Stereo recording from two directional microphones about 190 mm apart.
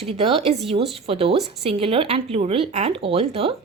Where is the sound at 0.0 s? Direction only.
30° right (ahead or behind).